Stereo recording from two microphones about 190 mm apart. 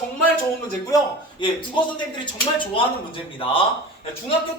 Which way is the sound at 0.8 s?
20° left (ahead or behind).